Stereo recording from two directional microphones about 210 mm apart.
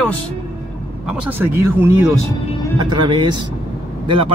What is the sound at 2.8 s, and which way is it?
Speech, 20° right (ahead or behind).